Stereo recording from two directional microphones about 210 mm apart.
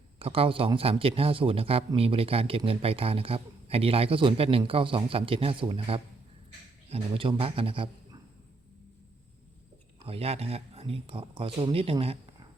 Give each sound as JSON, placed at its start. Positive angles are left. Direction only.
{"t": 0.2, "sound": "speech", "side_deg": -25}
{"t": 10.1, "sound": "speech", "side_deg": -30}